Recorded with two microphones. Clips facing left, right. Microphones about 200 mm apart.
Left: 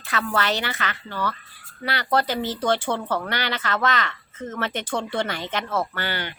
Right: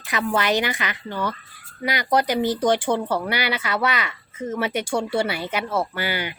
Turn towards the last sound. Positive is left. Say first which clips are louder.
# right 3 dB
turn(degrees=-10)  # may be behind; listen again after turning